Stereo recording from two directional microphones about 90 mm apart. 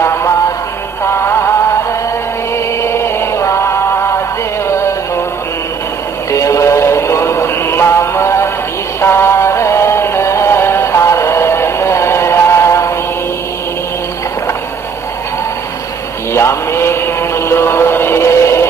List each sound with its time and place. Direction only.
1.0 s music: 30° left (ahead or behind)
6.3 s music: 35° left (ahead or behind)
16.3 s mantra: 30° left (ahead or behind)